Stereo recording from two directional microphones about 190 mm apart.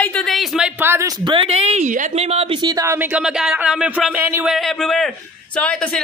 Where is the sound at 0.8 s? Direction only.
15° right (ahead or behind).